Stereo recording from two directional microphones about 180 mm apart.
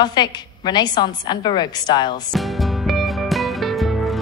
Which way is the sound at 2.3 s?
Centre (ahead or behind).